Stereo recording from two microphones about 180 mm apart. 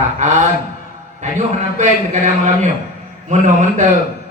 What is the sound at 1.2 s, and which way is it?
A man's voice, 40° right (ahead or behind).